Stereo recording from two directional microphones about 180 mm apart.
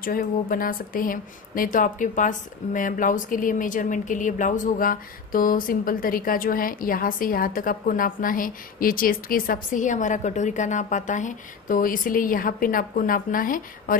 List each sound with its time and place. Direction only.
0.0 s speech: 50° left (ahead or behind)